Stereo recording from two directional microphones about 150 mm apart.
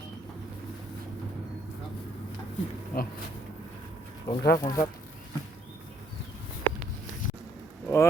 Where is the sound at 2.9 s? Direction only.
70° left (ahead or behind).